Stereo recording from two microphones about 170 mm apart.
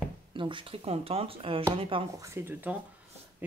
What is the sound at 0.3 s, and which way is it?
Speech, 30° right (ahead or behind).